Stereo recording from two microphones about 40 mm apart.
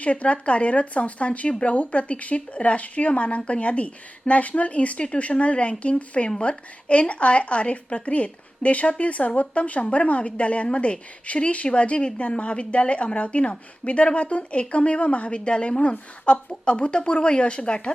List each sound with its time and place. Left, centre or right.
0.0 s a woman's voice: left